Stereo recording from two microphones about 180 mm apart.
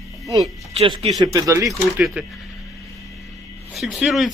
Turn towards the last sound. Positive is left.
turn(degrees=0)  # may be behind; listen again after turning